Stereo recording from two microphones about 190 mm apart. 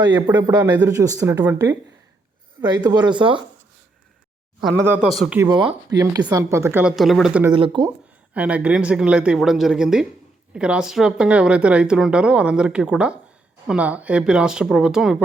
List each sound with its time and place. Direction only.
0.0 s speech: 20° right (ahead or behind)
0.3 s speech: 10° right (ahead or behind); by 3.4 s 25° right (ahead or behind)
4.9 s speech: 5° right (ahead or behind)
5.4 s speech: 25° right (ahead or behind); by 7.5 s 5° right (ahead or behind)
7.5 s speech: 25° right (ahead or behind)
7.9 s speech: 5° right (ahead or behind)